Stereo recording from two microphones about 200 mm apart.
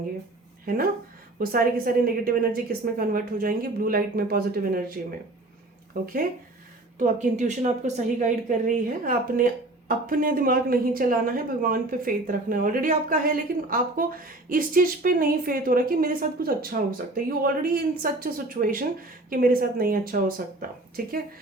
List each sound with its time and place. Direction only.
0.6 s speech: 45° right (ahead or behind)
6.0 s a woman's voice: 45° right (ahead or behind)